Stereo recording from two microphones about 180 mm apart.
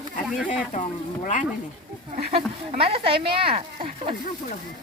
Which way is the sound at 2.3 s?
30° right (ahead or behind).